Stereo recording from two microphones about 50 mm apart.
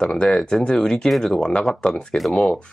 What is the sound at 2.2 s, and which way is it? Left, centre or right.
Speech, centre.